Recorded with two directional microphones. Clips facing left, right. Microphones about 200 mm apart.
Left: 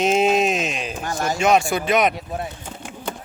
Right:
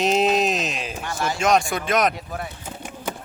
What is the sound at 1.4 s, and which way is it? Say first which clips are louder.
Speech: left 2 dB; centre (ahead or behind).